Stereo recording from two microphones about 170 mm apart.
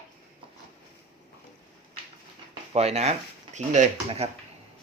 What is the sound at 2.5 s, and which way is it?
Speech, 40° right (ahead or behind).